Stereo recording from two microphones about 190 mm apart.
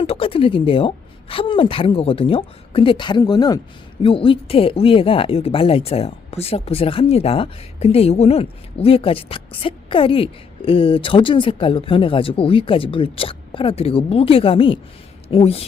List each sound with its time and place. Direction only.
0.0 s speech: 30° left (ahead or behind)